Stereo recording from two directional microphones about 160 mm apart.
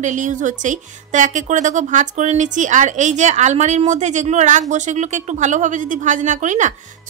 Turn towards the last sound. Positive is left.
turn(degrees=-50)  # may be behind; listen again after turning